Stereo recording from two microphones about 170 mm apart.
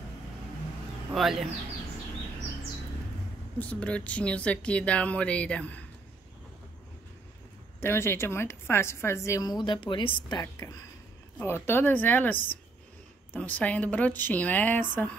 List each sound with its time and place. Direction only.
1.1 s speech: centre (ahead or behind)
3.5 s a woman's voice: 10° left (ahead or behind)
7.8 s a woman's voice: 15° left (ahead or behind)
10.4 s a woman's voice: 15° left (ahead or behind)